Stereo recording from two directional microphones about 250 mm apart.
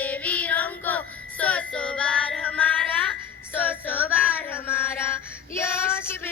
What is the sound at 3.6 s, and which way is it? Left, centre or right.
Music, centre.